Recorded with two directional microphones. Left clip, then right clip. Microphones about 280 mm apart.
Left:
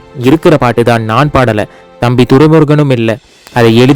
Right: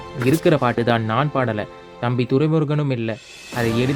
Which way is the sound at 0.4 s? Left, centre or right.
Left.